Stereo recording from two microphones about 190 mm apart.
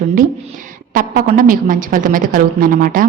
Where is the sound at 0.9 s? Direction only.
45° right (ahead or behind).